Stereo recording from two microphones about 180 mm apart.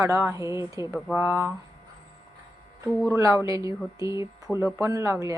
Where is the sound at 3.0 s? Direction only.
15° right (ahead or behind).